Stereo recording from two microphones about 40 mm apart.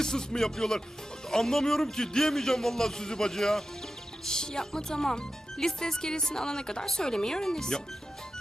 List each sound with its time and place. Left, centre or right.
0.0 s speech: centre